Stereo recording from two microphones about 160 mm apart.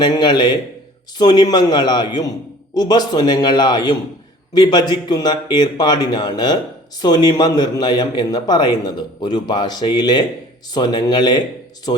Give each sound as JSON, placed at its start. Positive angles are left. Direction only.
{"t": 0.0, "sound": "a man's voice", "side_deg": 30}